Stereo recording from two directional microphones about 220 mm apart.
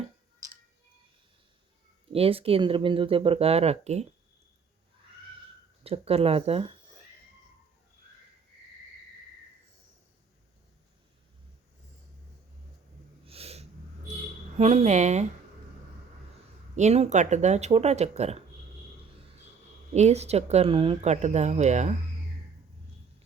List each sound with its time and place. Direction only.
2.1 s speech: 25° right (ahead or behind)
5.8 s speech: 25° right (ahead or behind)
13.2 s snort: 25° right (ahead or behind)
14.6 s speech: 30° right (ahead or behind)
16.7 s speech: 30° right (ahead or behind)
19.9 s speech: 30° right (ahead or behind)